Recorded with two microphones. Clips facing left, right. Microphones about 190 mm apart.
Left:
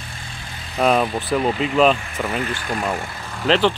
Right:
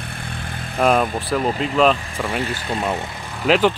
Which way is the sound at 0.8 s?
Centre (ahead or behind).